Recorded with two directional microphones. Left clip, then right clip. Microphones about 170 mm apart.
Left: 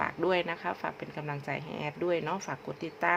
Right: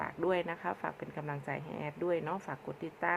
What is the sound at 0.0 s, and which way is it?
Speech, 10° left (ahead or behind).